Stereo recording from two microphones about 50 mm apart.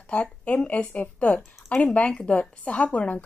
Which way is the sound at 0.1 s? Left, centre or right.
Left.